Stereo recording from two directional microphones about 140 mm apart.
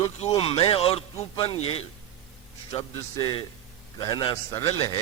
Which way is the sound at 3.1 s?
30° left (ahead or behind).